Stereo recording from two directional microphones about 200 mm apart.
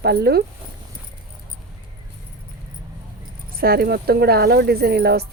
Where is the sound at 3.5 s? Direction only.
50° right (ahead or behind).